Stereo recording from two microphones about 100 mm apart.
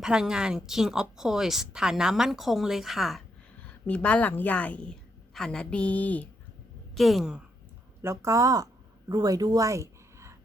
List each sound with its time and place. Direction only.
0.0 s speech: 5° right (ahead or behind)
3.7 s a woman's voice: 15° left (ahead or behind)
6.9 s speech: centre (ahead or behind)
8.0 s speech: 30° right (ahead or behind)